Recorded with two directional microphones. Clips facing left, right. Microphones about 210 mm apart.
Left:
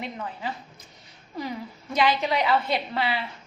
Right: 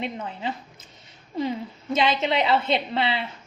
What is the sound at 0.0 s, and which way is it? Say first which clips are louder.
A woman's voice: right 3 dB; 25° right (ahead or behind).